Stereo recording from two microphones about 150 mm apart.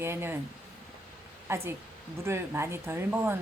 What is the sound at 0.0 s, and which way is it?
Speech, 15° right (ahead or behind).